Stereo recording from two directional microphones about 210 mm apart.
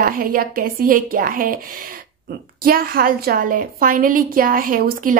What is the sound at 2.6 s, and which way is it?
A woman's voice, 45° right (ahead or behind).